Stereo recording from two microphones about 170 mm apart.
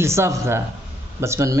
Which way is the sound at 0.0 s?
15° right (ahead or behind).